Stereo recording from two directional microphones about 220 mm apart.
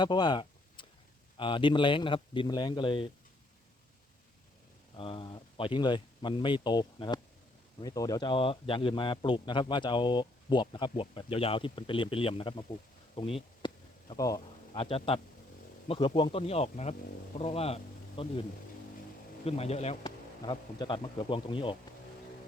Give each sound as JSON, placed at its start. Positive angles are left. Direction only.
{"t": 0.0, "sound": "a sound", "side_deg": 20}
{"t": 1.4, "sound": "a man's voice", "side_deg": 20}
{"t": 4.9, "sound": "a man's voice", "side_deg": 25}
{"t": 19.5, "sound": "a man's voice", "side_deg": 30}